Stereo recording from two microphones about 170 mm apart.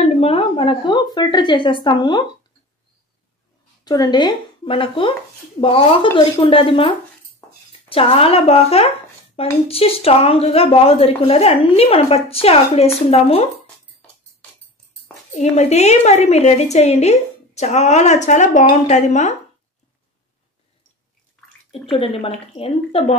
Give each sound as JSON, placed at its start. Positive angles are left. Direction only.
{"t": 0.0, "sound": "a woman's voice", "side_deg": 35}
{"t": 3.8, "sound": "a woman's voice", "side_deg": 25}
{"t": 7.9, "sound": "a woman's voice", "side_deg": 35}
{"t": 15.3, "sound": "a woman's voice", "side_deg": 40}
{"t": 21.9, "sound": "a woman's voice", "side_deg": 35}